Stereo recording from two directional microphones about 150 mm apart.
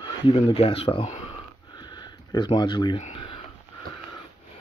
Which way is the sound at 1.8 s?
30° left (ahead or behind).